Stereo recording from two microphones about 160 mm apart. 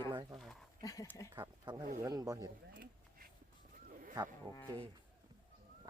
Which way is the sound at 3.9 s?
60° right (ahead or behind).